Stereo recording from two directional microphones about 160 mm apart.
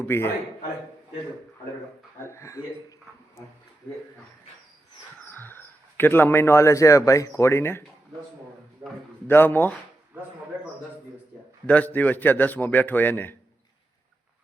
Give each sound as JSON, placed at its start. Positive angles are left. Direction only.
{"t": 0.0, "sound": "a man's voice", "side_deg": 15}
{"t": 2.1, "sound": "a man's voice", "side_deg": 15}
{"t": 5.3, "sound": "a man's voice", "side_deg": 10}
{"t": 8.8, "sound": "a man's voice", "side_deg": -25}
{"t": 9.2, "sound": "a man's voice", "side_deg": 10}
{"t": 10.2, "sound": "speech", "side_deg": -10}
{"t": 11.6, "sound": "a man's voice", "side_deg": 10}